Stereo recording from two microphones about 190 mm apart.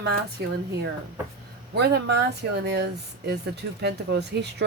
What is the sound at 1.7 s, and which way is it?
Speech, 60° right (ahead or behind).